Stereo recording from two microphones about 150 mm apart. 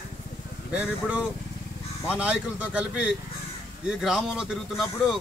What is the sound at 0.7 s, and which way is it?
A man's voice, 10° right (ahead or behind).